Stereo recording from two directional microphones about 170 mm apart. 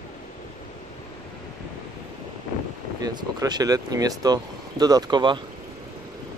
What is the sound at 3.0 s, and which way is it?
Speech, 25° right (ahead or behind).